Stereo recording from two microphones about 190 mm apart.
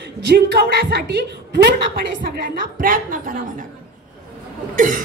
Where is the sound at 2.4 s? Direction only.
50° right (ahead or behind).